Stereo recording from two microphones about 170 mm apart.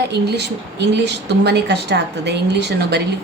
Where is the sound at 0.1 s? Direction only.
80° right.